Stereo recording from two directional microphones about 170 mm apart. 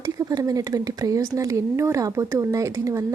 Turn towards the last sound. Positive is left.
turn(degrees=-20)  # may be behind; listen again after turning